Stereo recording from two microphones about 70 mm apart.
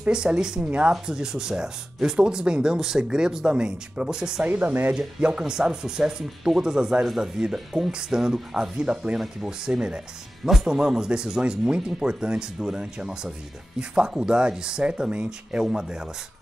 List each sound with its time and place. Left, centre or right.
0.1 s speech: centre
4.5 s speech: right
5.2 s speech: centre